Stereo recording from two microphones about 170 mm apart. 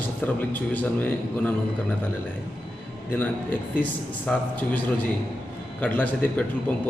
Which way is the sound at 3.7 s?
10° left (ahead or behind).